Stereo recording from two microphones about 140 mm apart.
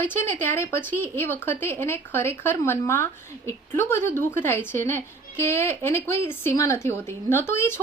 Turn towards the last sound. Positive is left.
turn(degrees=15)  # may be behind; listen again after turning